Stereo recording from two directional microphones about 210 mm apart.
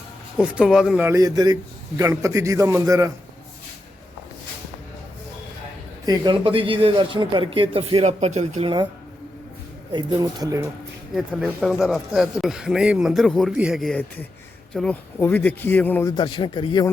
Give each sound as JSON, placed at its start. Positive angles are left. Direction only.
{"t": 0.3, "sound": "a man's voice", "side_deg": -5}
{"t": 6.1, "sound": "speech", "side_deg": -20}
{"t": 9.9, "sound": "a man's voice", "side_deg": -20}
{"t": 16.1, "sound": "speech", "side_deg": 20}